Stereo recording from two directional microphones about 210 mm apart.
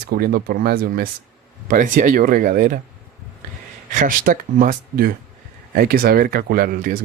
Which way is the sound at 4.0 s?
40° right (ahead or behind).